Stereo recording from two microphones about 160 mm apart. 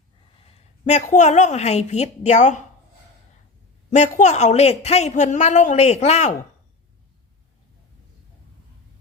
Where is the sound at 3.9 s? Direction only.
50° left (ahead or behind).